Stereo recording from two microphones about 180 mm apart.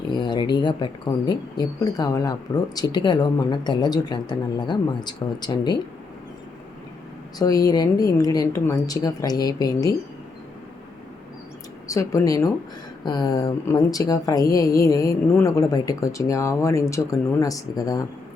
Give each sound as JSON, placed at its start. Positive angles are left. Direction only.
{"t": 0.1, "sound": "speech", "side_deg": 25}
{"t": 7.3, "sound": "speech", "side_deg": 20}
{"t": 11.9, "sound": "speech", "side_deg": 15}